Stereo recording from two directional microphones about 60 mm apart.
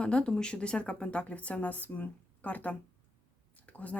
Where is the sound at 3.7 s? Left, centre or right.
Left.